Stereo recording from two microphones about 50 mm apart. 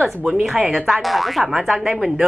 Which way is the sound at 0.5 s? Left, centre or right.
Centre.